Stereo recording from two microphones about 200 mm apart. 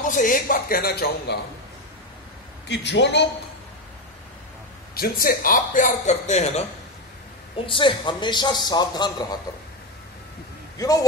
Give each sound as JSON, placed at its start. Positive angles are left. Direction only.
{"t": 0.0, "sound": "a man's voice", "side_deg": 40}
{"t": 2.7, "sound": "a man's voice", "side_deg": 60}
{"t": 4.9, "sound": "speech", "side_deg": 50}
{"t": 7.6, "sound": "a man's voice", "side_deg": 25}
{"t": 10.8, "sound": "a man's voice", "side_deg": 15}